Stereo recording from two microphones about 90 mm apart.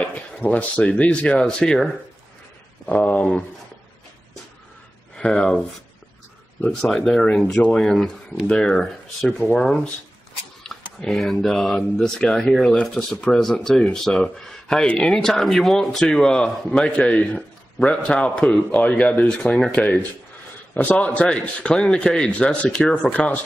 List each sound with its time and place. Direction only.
0.0 s speech: 15° left (ahead or behind)
2.9 s speech: 15° left (ahead or behind)
5.1 s speech: 10° left (ahead or behind)
6.9 s speech: 5° left (ahead or behind)
11.0 s a man's voice: 5° left (ahead or behind)